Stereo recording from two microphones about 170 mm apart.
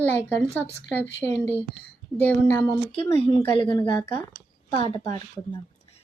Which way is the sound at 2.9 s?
35° left (ahead or behind).